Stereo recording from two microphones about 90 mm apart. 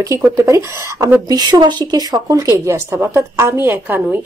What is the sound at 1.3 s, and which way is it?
Speech, 50° right (ahead or behind).